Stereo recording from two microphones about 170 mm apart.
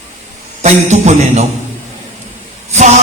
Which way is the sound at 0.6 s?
40° right (ahead or behind).